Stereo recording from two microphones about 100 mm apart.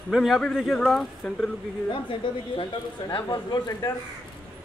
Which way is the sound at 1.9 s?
60° left (ahead or behind).